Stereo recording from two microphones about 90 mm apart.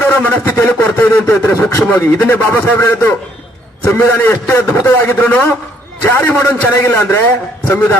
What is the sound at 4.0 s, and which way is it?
A man's voice, 25° left (ahead or behind).